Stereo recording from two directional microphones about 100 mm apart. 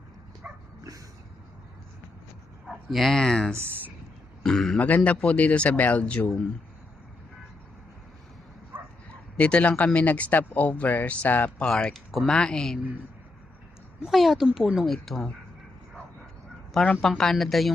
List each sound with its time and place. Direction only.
0.4 s bow-wow: 15° right (ahead or behind)
2.6 s speech: centre (ahead or behind)
3.5 s speech: 20° right (ahead or behind)
4.4 s speech: 5° left (ahead or behind)
8.7 s bow-wow: 20° right (ahead or behind)
9.4 s speech: 10° left (ahead or behind)
14.0 s speech: centre (ahead or behind)
16.7 s speech: 5° left (ahead or behind)